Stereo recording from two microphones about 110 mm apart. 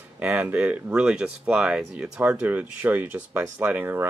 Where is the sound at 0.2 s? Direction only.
15° right (ahead or behind).